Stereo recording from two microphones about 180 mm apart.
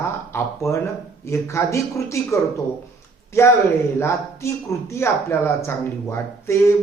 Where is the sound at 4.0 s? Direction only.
15° left (ahead or behind).